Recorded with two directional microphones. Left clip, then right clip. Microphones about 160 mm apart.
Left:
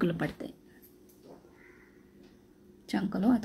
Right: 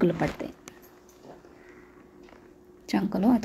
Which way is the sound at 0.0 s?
20° right (ahead or behind).